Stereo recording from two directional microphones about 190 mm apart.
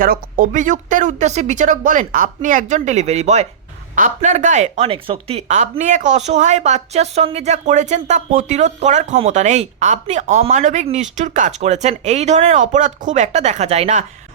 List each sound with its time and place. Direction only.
0.0 s speech: 45° right (ahead or behind)